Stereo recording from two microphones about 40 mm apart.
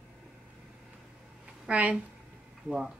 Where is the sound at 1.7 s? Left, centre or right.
Right.